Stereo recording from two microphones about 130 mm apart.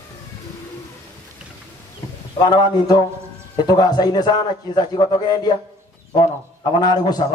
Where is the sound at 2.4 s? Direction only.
35° left (ahead or behind).